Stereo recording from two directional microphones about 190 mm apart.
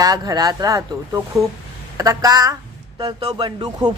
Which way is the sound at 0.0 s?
20° right (ahead or behind).